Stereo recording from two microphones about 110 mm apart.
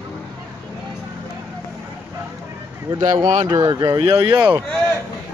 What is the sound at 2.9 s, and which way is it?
A man's voice, 35° right (ahead or behind).